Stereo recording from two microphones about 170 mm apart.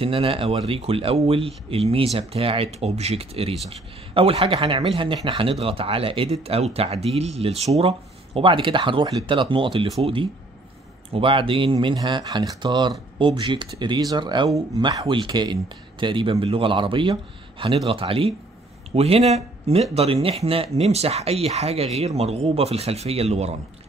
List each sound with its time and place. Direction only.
0.0 s speech: 35° right (ahead or behind)